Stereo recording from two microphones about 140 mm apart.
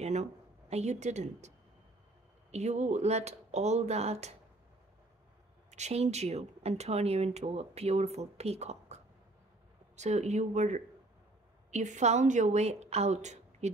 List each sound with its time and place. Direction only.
0.0 s speech: 55° right (ahead or behind)
2.5 s a woman's voice: 55° right (ahead or behind)
5.7 s a woman's voice: 55° right (ahead or behind)